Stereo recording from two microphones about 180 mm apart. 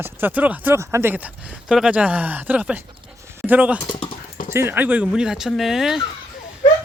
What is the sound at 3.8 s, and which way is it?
Speech, 25° left (ahead or behind).